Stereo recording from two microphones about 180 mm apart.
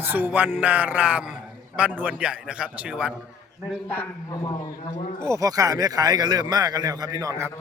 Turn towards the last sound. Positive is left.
turn(degrees=-15)  # may be behind; listen again after turning